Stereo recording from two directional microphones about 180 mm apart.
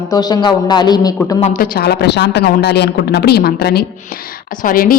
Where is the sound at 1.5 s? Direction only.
55° left (ahead or behind).